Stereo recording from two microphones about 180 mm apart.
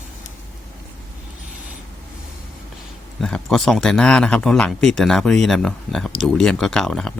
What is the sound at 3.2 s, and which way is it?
Speech, centre (ahead or behind).